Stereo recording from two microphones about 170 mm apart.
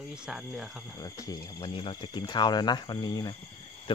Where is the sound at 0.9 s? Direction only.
20° left (ahead or behind).